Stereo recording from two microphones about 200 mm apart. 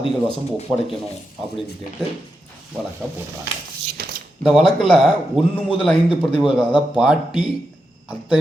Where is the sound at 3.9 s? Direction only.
50° right (ahead or behind).